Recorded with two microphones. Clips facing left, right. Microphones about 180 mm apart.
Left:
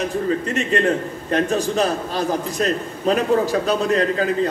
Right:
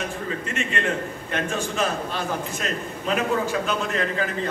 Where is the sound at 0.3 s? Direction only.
35° left (ahead or behind).